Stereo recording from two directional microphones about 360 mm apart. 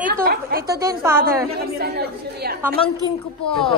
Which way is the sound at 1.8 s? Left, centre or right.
Right.